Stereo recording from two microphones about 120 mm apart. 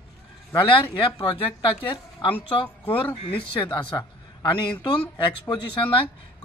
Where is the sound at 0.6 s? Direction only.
45° left (ahead or behind).